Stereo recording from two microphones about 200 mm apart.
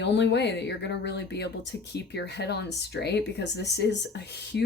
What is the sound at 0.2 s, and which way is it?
Speech, 60° left (ahead or behind).